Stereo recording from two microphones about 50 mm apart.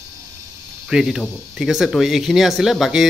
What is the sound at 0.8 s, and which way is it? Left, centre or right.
Speech, centre.